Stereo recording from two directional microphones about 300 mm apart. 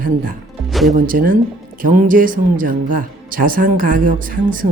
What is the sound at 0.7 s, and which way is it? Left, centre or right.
Music, centre.